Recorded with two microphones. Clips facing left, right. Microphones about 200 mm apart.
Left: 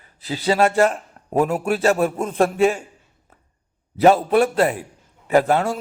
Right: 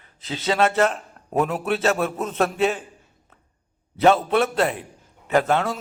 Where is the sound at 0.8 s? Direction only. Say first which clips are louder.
Left 3 dB; 10° left (ahead or behind).